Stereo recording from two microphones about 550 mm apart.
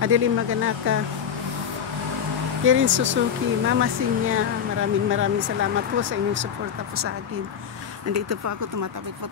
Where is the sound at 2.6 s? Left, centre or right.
Right.